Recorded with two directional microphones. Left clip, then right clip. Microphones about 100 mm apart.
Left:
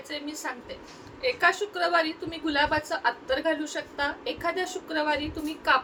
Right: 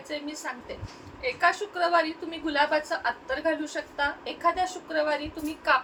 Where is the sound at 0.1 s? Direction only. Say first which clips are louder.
Even; 35° left (ahead or behind).